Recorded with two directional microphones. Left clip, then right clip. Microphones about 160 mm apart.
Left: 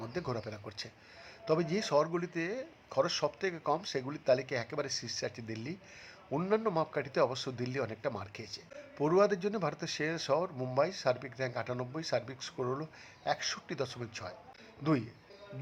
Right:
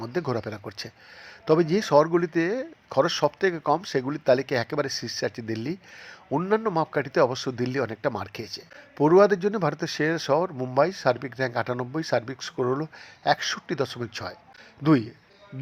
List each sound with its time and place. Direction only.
0.0 s speech: 25° right (ahead or behind)